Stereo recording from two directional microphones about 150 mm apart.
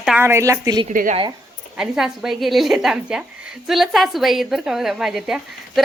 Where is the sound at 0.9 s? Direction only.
60° right (ahead or behind).